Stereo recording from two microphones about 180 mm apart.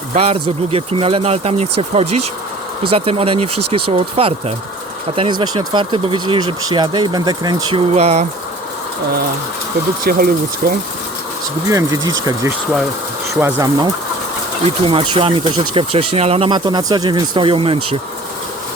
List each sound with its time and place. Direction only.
0.1 s speech: 35° right (ahead or behind)
7.9 s speech: 35° right (ahead or behind)
10.0 s speech: 55° right (ahead or behind)
11.7 s speech: 20° right (ahead or behind)